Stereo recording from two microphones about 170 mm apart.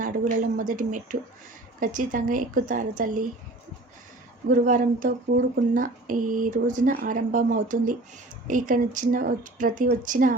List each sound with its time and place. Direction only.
0.0 s speech: 50° right (ahead or behind)
4.4 s speech: 50° right (ahead or behind)